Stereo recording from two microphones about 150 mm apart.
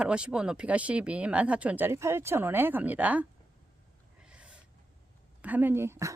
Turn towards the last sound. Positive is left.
turn(degrees=-20)  # may be behind; listen again after turning